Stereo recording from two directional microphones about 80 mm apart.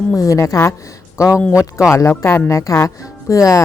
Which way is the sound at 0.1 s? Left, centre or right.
Left.